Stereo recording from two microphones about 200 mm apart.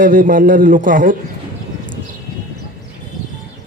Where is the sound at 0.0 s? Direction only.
40° right (ahead or behind).